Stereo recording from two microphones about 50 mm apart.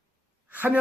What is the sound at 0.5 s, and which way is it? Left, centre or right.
Speech, right.